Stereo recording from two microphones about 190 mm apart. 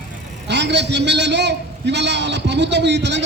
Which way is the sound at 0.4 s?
65° right (ahead or behind).